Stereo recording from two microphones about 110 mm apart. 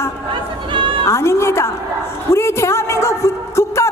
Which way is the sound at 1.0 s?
25° left (ahead or behind).